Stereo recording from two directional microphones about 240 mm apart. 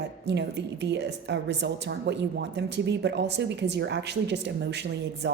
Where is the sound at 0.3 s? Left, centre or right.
Right.